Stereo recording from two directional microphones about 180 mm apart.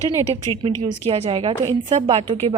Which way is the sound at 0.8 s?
35° right (ahead or behind).